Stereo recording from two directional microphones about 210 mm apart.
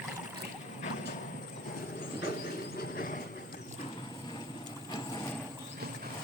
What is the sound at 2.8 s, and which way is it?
Vehicle, 45° left (ahead or behind).